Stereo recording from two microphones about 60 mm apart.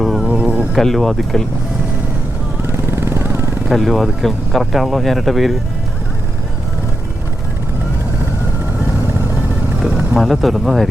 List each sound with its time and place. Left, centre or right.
0.0 s a sound: centre
0.3 s a sound: centre
0.7 s speech: centre
2.6 s vehicle: right
3.7 s speech: centre
10.2 s speech: centre